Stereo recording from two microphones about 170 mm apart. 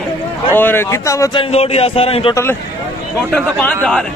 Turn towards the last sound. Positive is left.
turn(degrees=10)  # may be behind; listen again after turning